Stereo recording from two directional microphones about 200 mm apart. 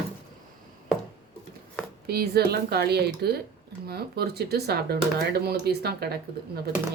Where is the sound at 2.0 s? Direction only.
50° right (ahead or behind).